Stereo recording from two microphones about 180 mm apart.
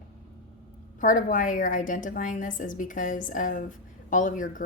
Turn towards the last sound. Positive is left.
turn(degrees=45)  # may be behind; listen again after turning